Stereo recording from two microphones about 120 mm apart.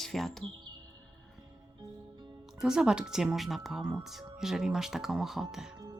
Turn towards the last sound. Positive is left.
turn(degrees=-5)  # may be behind; listen again after turning